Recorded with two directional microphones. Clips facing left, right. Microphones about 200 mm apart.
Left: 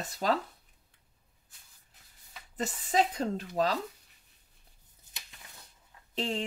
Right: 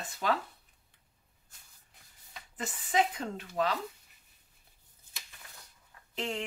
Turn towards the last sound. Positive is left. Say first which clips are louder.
# left 3 dB
turn(degrees=30)  # may be behind; listen again after turning